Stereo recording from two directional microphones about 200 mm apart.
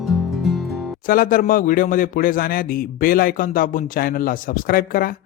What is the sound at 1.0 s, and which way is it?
A man's voice, 45° left (ahead or behind).